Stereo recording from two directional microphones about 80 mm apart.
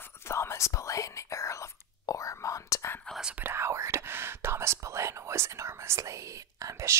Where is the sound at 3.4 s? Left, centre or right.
Right.